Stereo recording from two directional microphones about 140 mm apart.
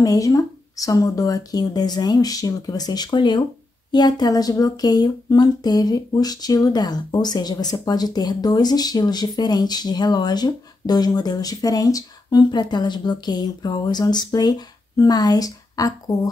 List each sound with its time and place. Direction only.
0.0 s speech: 25° left (ahead or behind)